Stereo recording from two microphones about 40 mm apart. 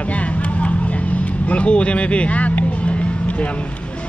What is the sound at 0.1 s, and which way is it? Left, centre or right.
Vehicle, left.